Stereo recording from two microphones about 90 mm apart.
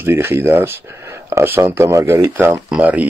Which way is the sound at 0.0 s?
25° right (ahead or behind).